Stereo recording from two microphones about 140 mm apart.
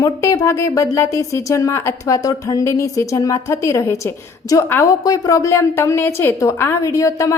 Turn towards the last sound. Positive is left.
turn(degrees=20)  # may be behind; listen again after turning